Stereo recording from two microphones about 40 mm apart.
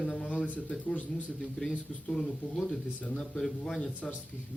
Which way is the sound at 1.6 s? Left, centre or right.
Centre.